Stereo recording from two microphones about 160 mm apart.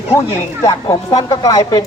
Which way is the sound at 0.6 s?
25° left (ahead or behind).